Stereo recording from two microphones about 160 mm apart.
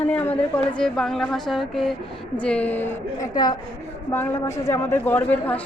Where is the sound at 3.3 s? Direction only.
25° left (ahead or behind).